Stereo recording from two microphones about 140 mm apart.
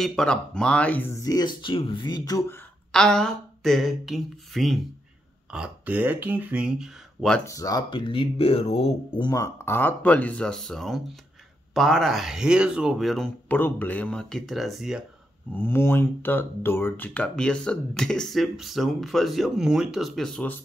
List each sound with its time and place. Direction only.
0.0 s speech: 5° left (ahead or behind)
1.2 s speech: 30° left (ahead or behind)
2.9 s speech: 5° left (ahead or behind)
7.4 s speech: 25° left (ahead or behind); by 9.2 s 45° left (ahead or behind)
9.2 s speech: 25° left (ahead or behind); by 13.3 s centre (ahead or behind)
13.5 s speech: 15° left (ahead or behind); by 15.0 s 5° right (ahead or behind)
15.5 s speech: 15° left (ahead or behind)